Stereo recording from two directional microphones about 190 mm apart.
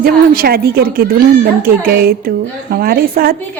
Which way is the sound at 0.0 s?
50° right (ahead or behind).